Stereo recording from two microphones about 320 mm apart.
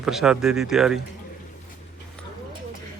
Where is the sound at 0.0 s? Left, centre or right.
Centre.